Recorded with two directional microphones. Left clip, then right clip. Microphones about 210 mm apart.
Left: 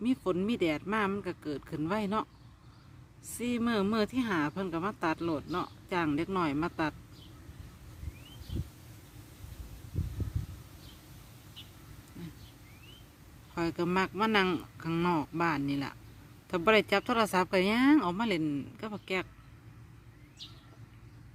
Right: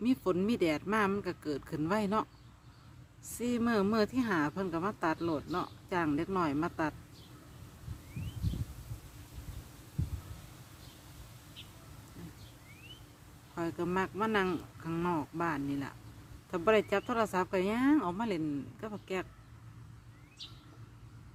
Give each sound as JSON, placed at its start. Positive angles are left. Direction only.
{"t": 0.0, "sound": "speech", "side_deg": 0}
{"t": 3.3, "sound": "speech", "side_deg": 0}
{"t": 13.6, "sound": "speech", "side_deg": 25}